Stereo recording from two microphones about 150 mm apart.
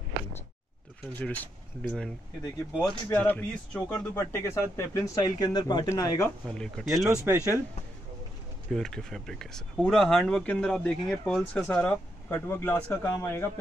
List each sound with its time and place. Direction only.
1.2 s speech: 10° left (ahead or behind)
6.4 s speech: 5° left (ahead or behind)
7.2 s speech: 20° right (ahead or behind)
8.7 s speech: 5° left (ahead or behind)